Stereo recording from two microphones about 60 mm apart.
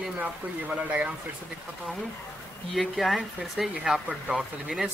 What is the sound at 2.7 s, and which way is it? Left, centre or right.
Speech, centre.